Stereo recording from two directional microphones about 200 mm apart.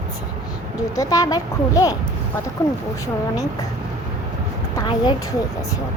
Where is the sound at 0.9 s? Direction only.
15° left (ahead or behind).